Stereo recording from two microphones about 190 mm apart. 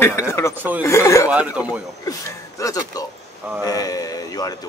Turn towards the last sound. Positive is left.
turn(degrees=20)  # may be behind; listen again after turning